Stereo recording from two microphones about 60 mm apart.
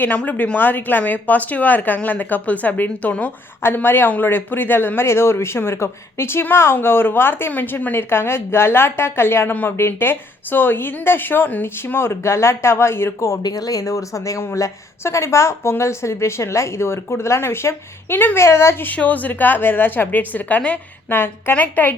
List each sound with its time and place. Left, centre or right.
0.4 s a woman's voice: left
3.8 s speech: left
7.9 s speech: left
18.9 s a woman's voice: left